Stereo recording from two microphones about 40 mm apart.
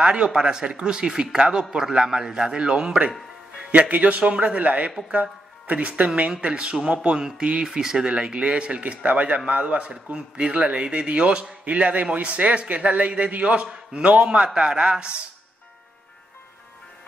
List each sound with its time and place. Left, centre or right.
0.0 s speech: right
3.9 s a man's voice: right
4.2 s a man's voice: right; by 8.0 s centre
8.0 s speech: right
11.6 s a man's voice: right